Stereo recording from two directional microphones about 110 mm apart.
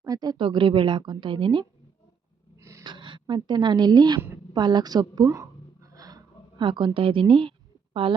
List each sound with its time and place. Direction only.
0.0 s speech: 35° right (ahead or behind)
0.3 s a woman's voice: 50° right (ahead or behind)
2.6 s a sound: 25° right (ahead or behind)
2.8 s a woman's voice: 50° right (ahead or behind)